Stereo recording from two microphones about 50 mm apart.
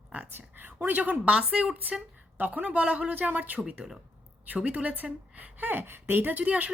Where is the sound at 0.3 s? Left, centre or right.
Right.